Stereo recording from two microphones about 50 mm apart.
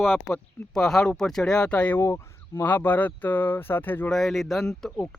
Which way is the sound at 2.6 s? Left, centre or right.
Left.